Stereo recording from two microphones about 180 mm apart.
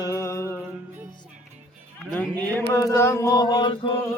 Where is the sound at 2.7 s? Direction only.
15° left (ahead or behind).